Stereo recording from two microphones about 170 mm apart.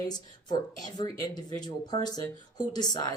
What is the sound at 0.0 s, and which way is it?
Speech, 25° left (ahead or behind).